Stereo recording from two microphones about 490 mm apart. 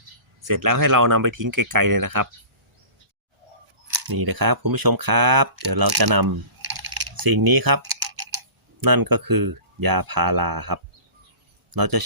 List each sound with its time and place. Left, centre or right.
0.4 s speech: right
4.0 s speech: right